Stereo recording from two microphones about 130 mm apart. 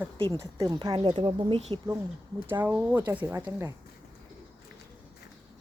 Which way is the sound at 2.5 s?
15° right (ahead or behind).